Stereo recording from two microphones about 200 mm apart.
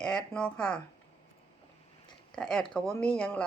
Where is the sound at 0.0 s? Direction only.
5° left (ahead or behind).